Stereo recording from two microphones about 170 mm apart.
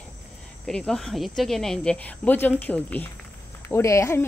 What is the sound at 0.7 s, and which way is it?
Speech, 5° left (ahead or behind).